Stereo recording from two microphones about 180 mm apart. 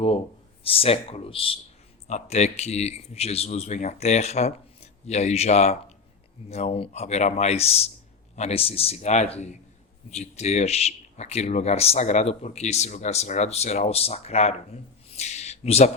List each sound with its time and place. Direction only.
0.6 s speech: 30° left (ahead or behind)